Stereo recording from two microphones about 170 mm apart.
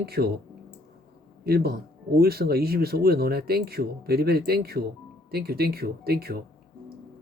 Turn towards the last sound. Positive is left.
turn(degrees=-65)  # may be behind; listen again after turning